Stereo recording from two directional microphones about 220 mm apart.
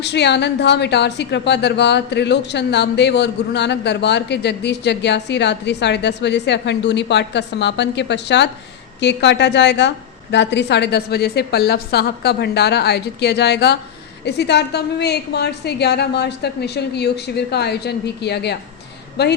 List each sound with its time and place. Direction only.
0.0 s speech: 50° left (ahead or behind)